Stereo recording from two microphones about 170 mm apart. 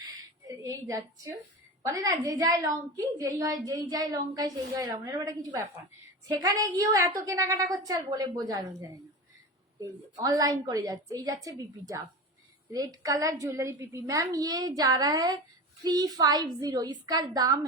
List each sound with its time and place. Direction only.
0.0 s a sound: 20° right (ahead or behind)
1.8 s a woman's voice: 20° right (ahead or behind)
9.8 s a woman's voice: 20° right (ahead or behind)